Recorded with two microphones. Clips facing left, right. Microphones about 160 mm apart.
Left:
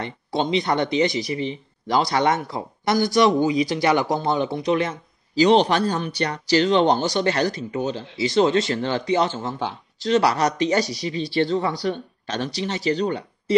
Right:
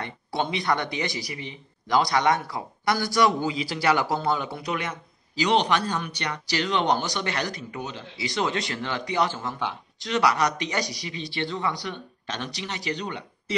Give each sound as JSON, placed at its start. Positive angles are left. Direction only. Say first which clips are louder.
{"t": 0.0, "sound": "speech", "louder": "left 4 dB", "side_deg": 25}